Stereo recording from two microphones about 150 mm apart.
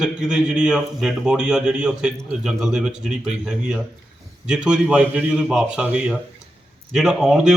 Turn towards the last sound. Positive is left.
turn(degrees=-5)  # may be behind; listen again after turning